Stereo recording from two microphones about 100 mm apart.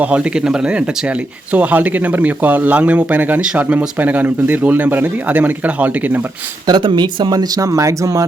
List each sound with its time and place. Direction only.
0.0 s speech: 15° right (ahead or behind)
6.7 s speech: 50° right (ahead or behind); by 8.3 s 30° right (ahead or behind)